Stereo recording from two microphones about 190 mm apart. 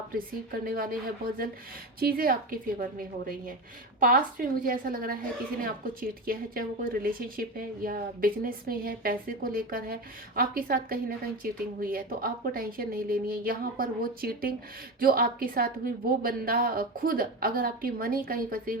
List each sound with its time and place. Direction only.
0.6 s a woman's voice: 50° right (ahead or behind)